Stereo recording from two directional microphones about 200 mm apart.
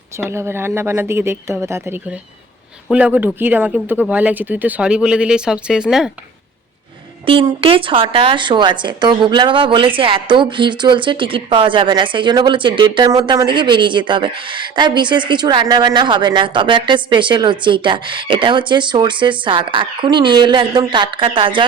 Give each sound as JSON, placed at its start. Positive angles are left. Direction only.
{"t": 0.3, "sound": "speech", "side_deg": -10}
{"t": 7.3, "sound": "speech", "side_deg": -25}